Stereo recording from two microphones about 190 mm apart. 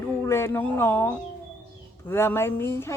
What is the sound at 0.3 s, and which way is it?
A woman's voice, 15° left (ahead or behind).